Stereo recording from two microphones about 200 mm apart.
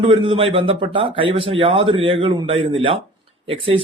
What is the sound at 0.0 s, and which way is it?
A man's voice, 25° right (ahead or behind).